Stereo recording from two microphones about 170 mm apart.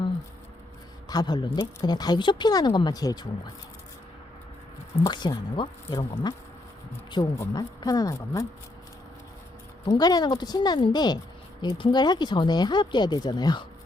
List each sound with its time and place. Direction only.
1.1 s speech: 25° left (ahead or behind)
5.0 s speech: 25° left (ahead or behind)
9.8 s speech: 25° left (ahead or behind)